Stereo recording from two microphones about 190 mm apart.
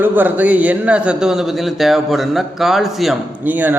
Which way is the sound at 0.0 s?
10° right (ahead or behind).